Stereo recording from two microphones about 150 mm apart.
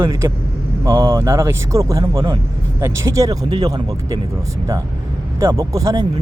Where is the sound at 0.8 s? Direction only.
20° right (ahead or behind).